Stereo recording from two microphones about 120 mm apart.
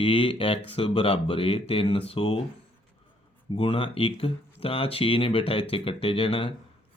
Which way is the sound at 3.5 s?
50° left (ahead or behind).